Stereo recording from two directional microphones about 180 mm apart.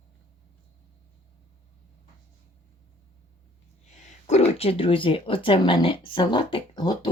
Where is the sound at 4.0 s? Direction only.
40° left (ahead or behind).